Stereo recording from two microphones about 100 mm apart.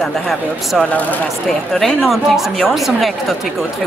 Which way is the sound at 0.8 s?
15° left (ahead or behind).